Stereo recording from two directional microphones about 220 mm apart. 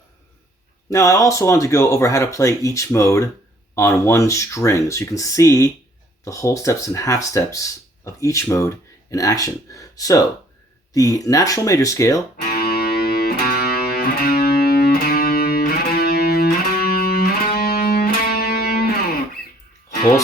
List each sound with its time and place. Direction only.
0.9 s speech: 15° left (ahead or behind)
12.5 s music: 45° left (ahead or behind)